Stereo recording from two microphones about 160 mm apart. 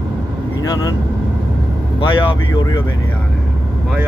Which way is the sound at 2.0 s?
30° left (ahead or behind).